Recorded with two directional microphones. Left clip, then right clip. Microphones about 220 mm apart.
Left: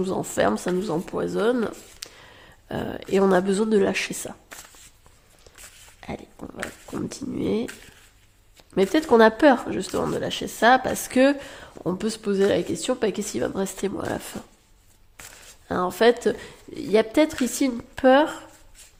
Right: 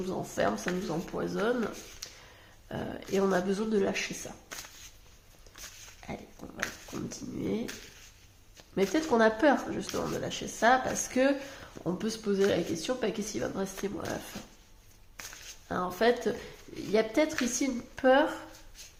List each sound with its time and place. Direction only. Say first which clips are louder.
0.0 s speech: left 8 dB; 45° left (ahead or behind)
6.0 s a sound: left 8 dB; 45° left (ahead or behind)
6.9 s speech: left 8 dB; 40° left (ahead or behind)
8.7 s speech: left 9 dB; 40° left (ahead or behind)
15.7 s speech: left 8 dB; 45° left (ahead or behind)